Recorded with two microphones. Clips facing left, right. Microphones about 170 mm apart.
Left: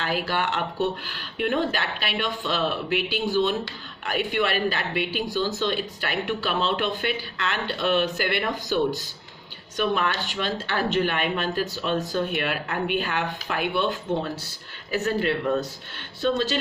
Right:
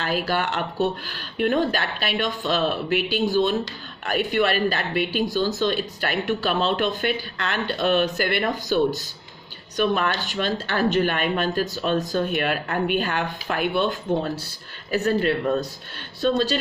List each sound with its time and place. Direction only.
0.0 s speech: 40° right (ahead or behind)